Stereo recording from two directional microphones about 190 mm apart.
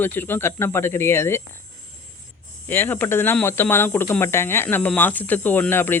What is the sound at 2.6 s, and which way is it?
Speech, 10° left (ahead or behind).